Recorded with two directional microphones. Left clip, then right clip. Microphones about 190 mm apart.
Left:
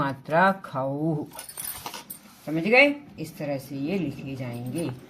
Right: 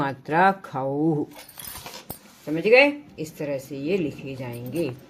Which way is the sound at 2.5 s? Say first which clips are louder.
Right 2 dB; 30° right (ahead or behind).